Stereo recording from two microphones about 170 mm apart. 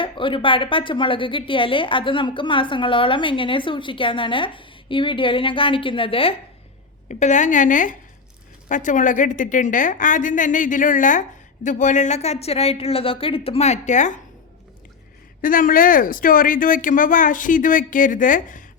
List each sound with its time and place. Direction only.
0.0 s a woman's voice: 30° left (ahead or behind)
7.1 s a woman's voice: 45° left (ahead or behind)
15.4 s a woman's voice: 55° left (ahead or behind)